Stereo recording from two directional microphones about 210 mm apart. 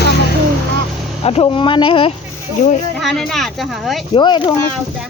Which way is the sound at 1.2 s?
25° left (ahead or behind).